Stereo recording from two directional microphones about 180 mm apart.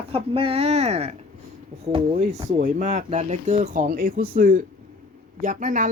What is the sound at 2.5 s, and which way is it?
Speech, 45° right (ahead or behind).